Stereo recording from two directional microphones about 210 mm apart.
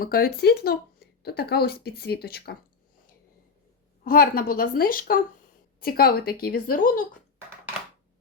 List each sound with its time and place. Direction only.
0.0 s speech: 45° left (ahead or behind)
4.0 s speech: 45° left (ahead or behind)